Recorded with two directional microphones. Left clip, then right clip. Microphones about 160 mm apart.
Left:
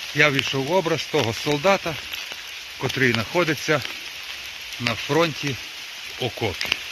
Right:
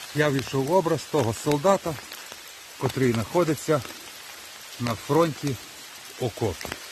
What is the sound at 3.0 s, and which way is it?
Speech, 15° right (ahead or behind).